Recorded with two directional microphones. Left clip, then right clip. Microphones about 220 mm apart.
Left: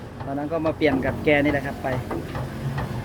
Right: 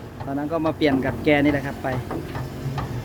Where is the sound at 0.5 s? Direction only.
15° right (ahead or behind).